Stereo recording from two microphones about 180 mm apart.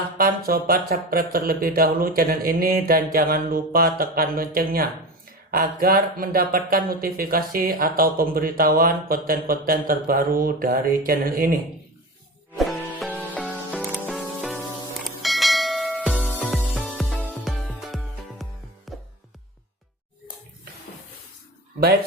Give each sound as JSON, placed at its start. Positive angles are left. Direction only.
{"t": 0.2, "sound": "speech", "side_deg": -55}
{"t": 12.5, "sound": "music", "side_deg": 0}
{"t": 15.0, "sound": "church bell", "side_deg": 0}
{"t": 16.4, "sound": "music", "side_deg": 0}